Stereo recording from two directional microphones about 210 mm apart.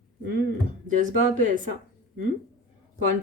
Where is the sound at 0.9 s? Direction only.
35° right (ahead or behind).